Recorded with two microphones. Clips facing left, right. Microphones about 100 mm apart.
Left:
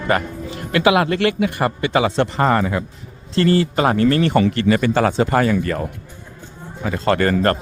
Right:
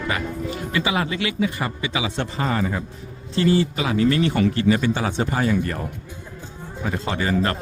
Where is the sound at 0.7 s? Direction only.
70° left (ahead or behind).